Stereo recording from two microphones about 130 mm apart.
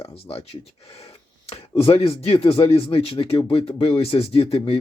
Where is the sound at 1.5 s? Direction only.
45° left (ahead or behind).